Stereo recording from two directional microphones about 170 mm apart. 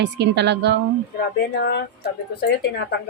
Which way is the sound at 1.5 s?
70° left (ahead or behind).